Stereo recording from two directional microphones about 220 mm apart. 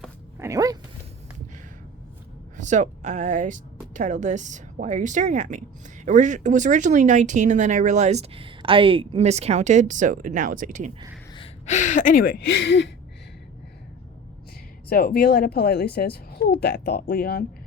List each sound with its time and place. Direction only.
0.3 s a sound: 15° right (ahead or behind)
2.6 s speech: 35° right (ahead or behind)
11.3 s speech: 30° left (ahead or behind); by 12.9 s 50° left (ahead or behind)
14.8 s a child's voice: 45° left (ahead or behind)